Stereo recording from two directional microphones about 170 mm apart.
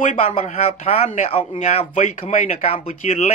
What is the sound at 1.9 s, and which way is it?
Speech, 50° left (ahead or behind).